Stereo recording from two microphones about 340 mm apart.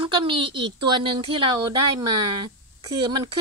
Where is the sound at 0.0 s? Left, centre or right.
Centre.